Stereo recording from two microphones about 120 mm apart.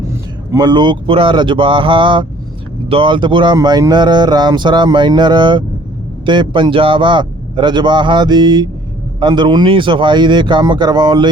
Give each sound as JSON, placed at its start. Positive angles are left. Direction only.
{"t": 0.5, "sound": "speech", "side_deg": -35}